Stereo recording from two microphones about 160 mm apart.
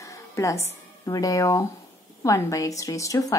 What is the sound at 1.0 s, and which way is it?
A woman's voice, 20° left (ahead or behind).